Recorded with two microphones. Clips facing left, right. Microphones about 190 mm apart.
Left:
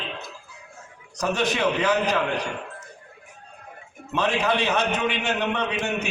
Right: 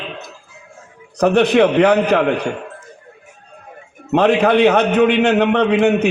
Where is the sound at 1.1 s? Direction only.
60° right (ahead or behind).